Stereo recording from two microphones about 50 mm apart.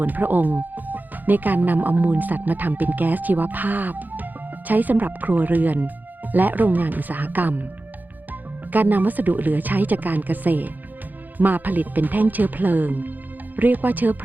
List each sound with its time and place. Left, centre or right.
0.0 s speech: right